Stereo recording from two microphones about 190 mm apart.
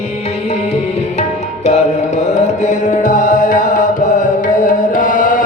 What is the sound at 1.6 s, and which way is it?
Music, 35° left (ahead or behind).